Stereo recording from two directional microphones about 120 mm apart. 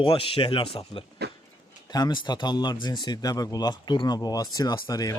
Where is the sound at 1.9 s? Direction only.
35° left (ahead or behind).